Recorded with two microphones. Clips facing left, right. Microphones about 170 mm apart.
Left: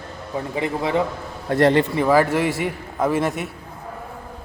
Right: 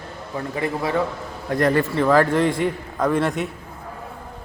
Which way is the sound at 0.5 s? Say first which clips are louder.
Left 1 dB; 20° left (ahead or behind).